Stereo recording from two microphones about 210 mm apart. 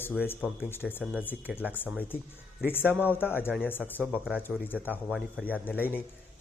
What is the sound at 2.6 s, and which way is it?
Speech, 10° left (ahead or behind).